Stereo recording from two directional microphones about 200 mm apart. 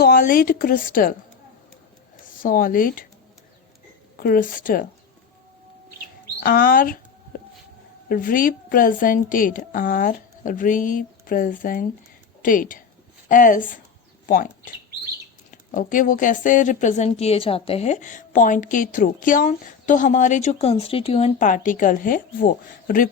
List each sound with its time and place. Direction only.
0.0 s a woman's voice: 45° left (ahead or behind)
2.2 s speech: 45° left (ahead or behind)
4.2 s a woman's voice: 45° left (ahead or behind)
6.4 s a woman's voice: 45° left (ahead or behind)
8.1 s a woman's voice: 45° left (ahead or behind)